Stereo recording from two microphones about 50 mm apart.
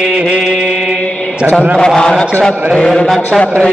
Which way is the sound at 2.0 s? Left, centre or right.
Centre.